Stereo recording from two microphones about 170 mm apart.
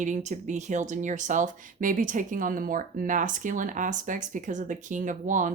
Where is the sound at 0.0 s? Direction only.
45° right (ahead or behind).